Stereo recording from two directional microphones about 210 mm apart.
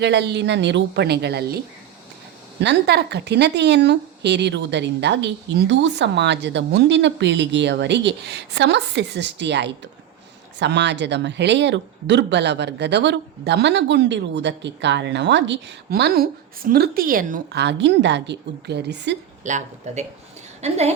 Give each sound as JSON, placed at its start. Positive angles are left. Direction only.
{"t": 0.0, "sound": "speech", "side_deg": -55}
{"t": 2.6, "sound": "speech", "side_deg": -55}
{"t": 19.5, "sound": "a woman's voice", "side_deg": -35}